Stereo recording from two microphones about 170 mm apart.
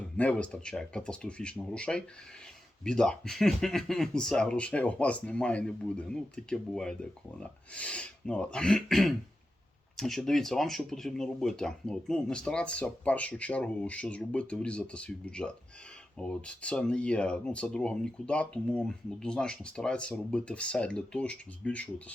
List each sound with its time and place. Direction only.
0.0 s speech: 10° left (ahead or behind)